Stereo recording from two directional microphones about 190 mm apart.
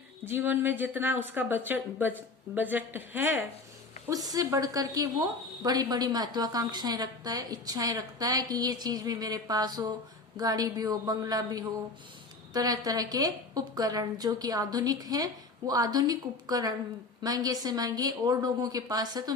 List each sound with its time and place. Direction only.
0.3 s a woman's voice: 10° right (ahead or behind)